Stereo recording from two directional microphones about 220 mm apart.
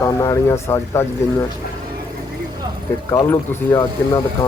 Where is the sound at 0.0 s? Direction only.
15° left (ahead or behind).